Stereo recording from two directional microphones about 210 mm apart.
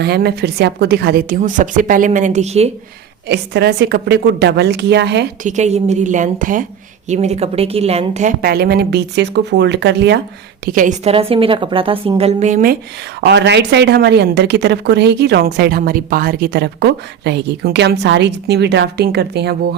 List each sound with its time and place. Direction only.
0.0 s a woman's voice: 50° right (ahead or behind); by 2.6 s 30° right (ahead or behind)
3.2 s a woman's voice: 50° right (ahead or behind)
5.4 s a woman's voice: 35° right (ahead or behind); by 10.2 s 55° right (ahead or behind)
10.7 s a woman's voice: 40° right (ahead or behind)
13.2 s a woman's voice: 55° right (ahead or behind)